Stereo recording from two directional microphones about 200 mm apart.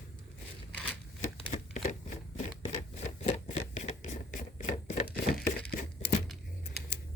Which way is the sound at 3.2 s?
30° left (ahead or behind).